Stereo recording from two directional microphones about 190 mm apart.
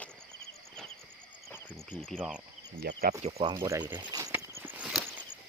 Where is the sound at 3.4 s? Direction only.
20° right (ahead or behind).